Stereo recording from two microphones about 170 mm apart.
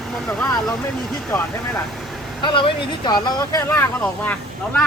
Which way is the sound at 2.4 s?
30° left (ahead or behind).